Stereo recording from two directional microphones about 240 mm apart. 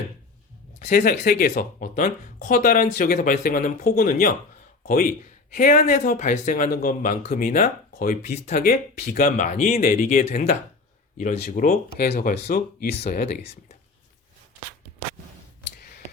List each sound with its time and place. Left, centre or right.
0.9 s speech: left
5.5 s speech: left